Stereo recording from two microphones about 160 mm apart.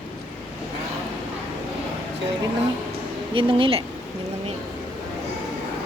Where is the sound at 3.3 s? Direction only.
35° right (ahead or behind).